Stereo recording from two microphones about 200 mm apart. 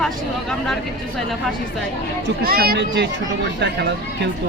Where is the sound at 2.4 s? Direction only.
50° right (ahead or behind).